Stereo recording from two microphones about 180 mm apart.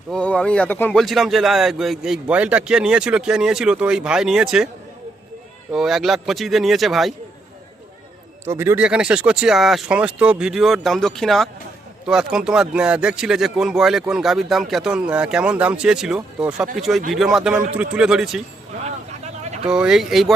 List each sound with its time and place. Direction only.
0.1 s speech: 5° left (ahead or behind)
5.7 s speech: centre (ahead or behind)
8.4 s speech: 15° right (ahead or behind)
18.9 s vehicle: 40° right (ahead or behind)
19.6 s speech: 5° right (ahead or behind)